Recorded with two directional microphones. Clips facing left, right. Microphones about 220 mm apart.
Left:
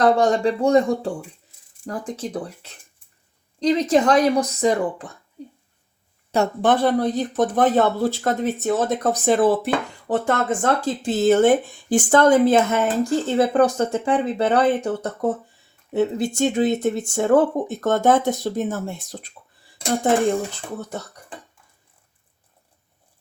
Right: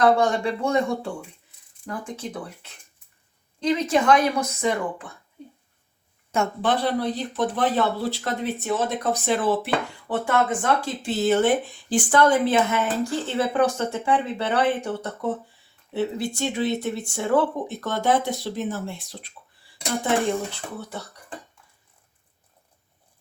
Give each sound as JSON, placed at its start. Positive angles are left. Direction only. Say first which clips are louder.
{"t": 0.0, "sound": "speech", "louder": "left 3 dB", "side_deg": 40}
{"t": 6.3, "sound": "speech", "louder": "left 5 dB", "side_deg": 40}